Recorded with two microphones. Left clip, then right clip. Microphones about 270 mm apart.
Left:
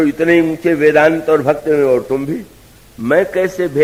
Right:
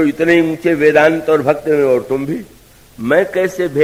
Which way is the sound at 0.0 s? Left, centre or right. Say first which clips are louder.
Even; left.